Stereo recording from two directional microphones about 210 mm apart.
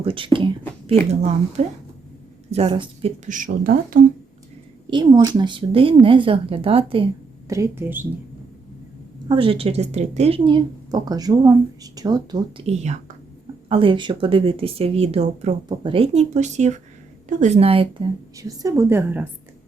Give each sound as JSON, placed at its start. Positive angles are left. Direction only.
{"t": 0.0, "sound": "speech", "side_deg": -25}
{"t": 1.6, "sound": "speech", "side_deg": -30}
{"t": 4.9, "sound": "speech", "side_deg": -20}
{"t": 7.4, "sound": "a woman's voice", "side_deg": -15}
{"t": 9.3, "sound": "speech", "side_deg": -25}
{"t": 18.3, "sound": "a woman's voice", "side_deg": -15}